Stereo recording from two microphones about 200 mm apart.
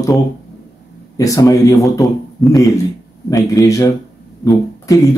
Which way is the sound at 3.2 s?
15° left (ahead or behind).